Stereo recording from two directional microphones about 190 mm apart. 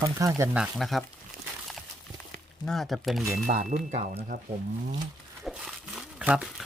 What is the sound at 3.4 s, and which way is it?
Speech, 40° right (ahead or behind).